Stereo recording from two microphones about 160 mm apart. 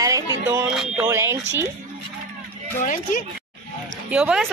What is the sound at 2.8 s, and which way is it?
Speech, 55° left (ahead or behind).